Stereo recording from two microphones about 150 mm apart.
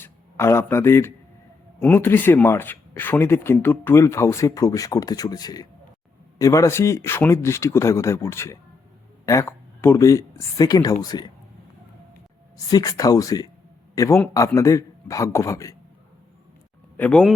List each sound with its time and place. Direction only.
0.0 s a man's voice: 15° left (ahead or behind)
12.7 s a man's voice: 25° left (ahead or behind)
17.0 s speech: 5° left (ahead or behind)